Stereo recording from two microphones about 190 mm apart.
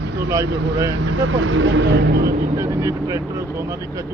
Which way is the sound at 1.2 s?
90° right.